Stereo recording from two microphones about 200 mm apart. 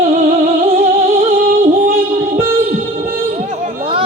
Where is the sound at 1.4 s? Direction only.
45° right (ahead or behind).